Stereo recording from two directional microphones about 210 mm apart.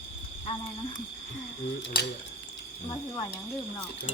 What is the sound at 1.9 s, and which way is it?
Speech, 50° left (ahead or behind).